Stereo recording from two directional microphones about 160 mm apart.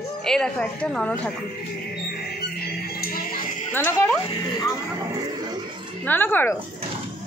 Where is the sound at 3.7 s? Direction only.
15° left (ahead or behind).